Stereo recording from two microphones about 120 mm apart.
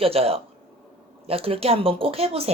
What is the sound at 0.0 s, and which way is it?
A woman's voice, 55° right (ahead or behind).